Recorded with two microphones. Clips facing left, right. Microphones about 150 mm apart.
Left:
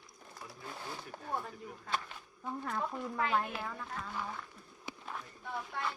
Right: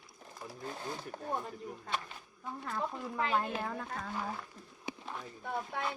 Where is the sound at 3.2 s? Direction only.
25° right (ahead or behind).